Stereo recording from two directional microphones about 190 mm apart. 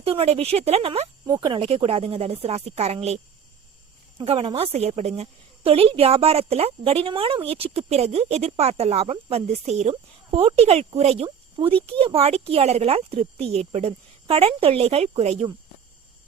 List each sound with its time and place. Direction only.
0.0 s a woman's voice: 30° right (ahead or behind)
4.2 s a woman's voice: 30° right (ahead or behind)